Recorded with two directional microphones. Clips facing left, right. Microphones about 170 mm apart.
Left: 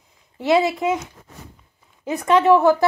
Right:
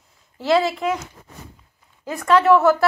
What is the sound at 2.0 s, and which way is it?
Speech, 20° left (ahead or behind).